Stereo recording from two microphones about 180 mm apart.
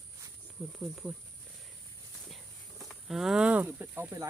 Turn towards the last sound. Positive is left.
turn(degrees=-15)  # may be behind; listen again after turning